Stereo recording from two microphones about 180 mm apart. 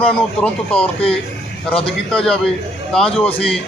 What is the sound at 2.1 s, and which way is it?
A man's voice, 5° left (ahead or behind).